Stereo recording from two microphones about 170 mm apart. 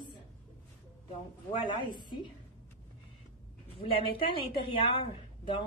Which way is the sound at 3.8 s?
30° left (ahead or behind).